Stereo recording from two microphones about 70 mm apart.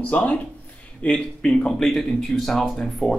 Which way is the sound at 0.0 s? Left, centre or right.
Left.